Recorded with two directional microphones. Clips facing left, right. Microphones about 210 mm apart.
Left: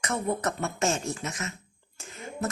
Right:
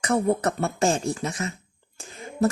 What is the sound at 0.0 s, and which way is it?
A woman's voice, 35° right (ahead or behind).